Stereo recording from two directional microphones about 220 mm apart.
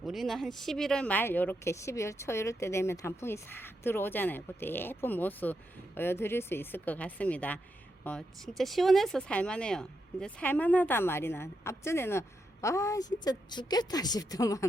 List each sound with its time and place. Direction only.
0.0 s speech: centre (ahead or behind); by 14.6 s 15° left (ahead or behind)